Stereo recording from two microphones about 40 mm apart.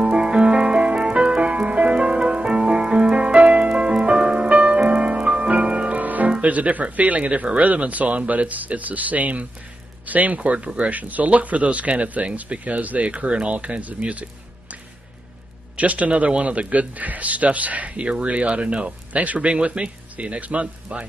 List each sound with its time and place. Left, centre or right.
0.0 s music: right
5.9 s music: right
6.3 s a man's voice: right
15.7 s a man's voice: right